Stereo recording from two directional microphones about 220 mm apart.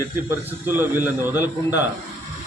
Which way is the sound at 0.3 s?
10° right (ahead or behind).